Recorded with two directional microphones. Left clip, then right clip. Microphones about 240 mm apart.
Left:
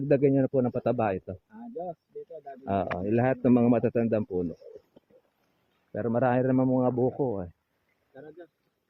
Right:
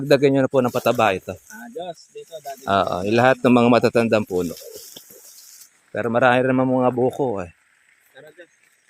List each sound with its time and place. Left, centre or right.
0.1 s speech: right
5.9 s speech: right